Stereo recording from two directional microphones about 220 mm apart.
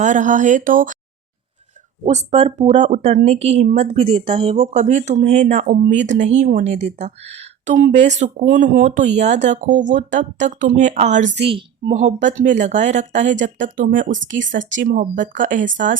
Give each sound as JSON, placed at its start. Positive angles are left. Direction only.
{"t": 0.0, "sound": "speech", "side_deg": -35}
{"t": 2.0, "sound": "speech", "side_deg": -30}